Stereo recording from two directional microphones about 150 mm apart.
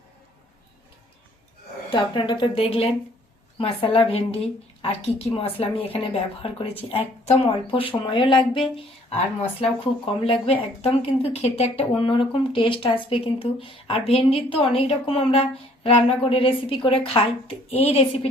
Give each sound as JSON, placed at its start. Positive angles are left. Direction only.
{"t": 1.9, "sound": "speech", "side_deg": 35}